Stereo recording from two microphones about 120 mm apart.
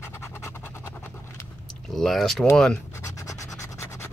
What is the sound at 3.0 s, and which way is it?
Scratch, 25° left (ahead or behind).